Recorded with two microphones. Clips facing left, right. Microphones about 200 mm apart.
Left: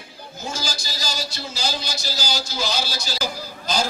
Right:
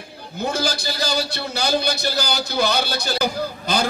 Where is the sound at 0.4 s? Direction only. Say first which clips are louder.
Right 8 dB; 60° right (ahead or behind).